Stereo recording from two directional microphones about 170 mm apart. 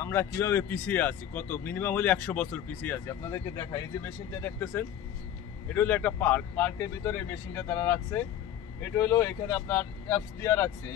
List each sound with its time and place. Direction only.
0.0 s speech: 15° left (ahead or behind)